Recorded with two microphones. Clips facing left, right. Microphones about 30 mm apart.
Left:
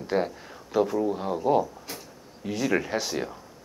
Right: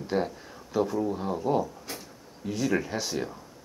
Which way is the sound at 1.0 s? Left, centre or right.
Centre.